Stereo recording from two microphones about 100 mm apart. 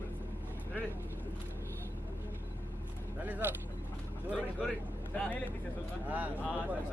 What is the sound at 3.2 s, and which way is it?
Speech, 15° right (ahead or behind).